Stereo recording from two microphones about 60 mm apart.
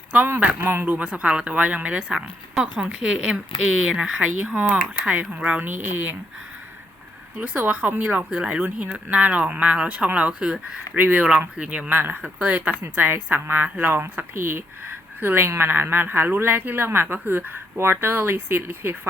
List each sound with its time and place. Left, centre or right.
0.1 s speech: right
0.9 s speech: right
3.9 s speech: right
7.3 s speech: right
10.9 s speech: right
11.9 s speech: right